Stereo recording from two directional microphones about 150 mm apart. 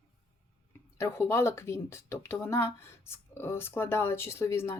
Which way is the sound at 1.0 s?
15° left (ahead or behind).